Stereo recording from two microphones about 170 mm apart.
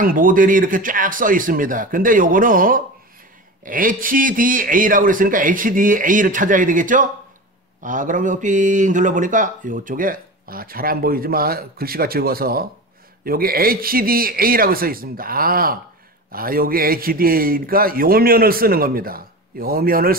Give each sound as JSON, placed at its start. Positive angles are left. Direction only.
{"t": 0.0, "sound": "a man's voice", "side_deg": -55}